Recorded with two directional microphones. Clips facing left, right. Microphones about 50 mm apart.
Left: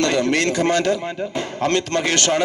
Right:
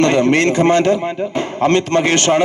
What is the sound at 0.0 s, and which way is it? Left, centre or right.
A man's voice, right.